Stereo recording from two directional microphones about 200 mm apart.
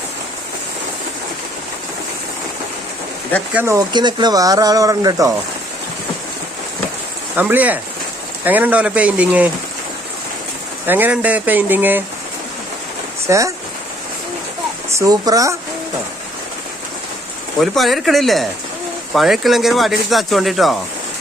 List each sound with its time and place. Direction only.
3.5 s speech: 10° right (ahead or behind)
7.3 s speech: 10° right (ahead or behind)
10.8 s speech: 10° right (ahead or behind)
13.2 s speech: 15° right (ahead or behind)
14.9 s speech: 20° right (ahead or behind)
17.6 s speech: centre (ahead or behind)